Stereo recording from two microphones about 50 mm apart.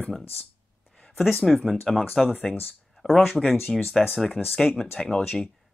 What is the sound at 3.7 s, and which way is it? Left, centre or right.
Speech, centre.